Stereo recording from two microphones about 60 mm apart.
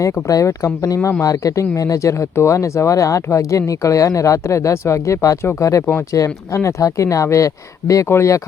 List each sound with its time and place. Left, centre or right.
0.0 s speech: left
8.1 s speech: left